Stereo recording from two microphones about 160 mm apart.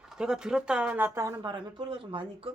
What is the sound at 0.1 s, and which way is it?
A woman's voice, 5° right (ahead or behind).